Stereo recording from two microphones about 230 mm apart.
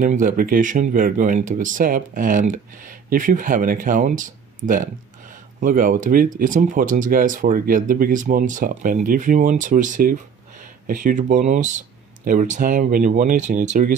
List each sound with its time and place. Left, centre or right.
0.0 s speech: right